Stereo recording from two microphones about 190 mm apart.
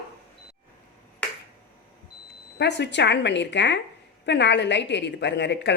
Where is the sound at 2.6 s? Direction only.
65° left (ahead or behind).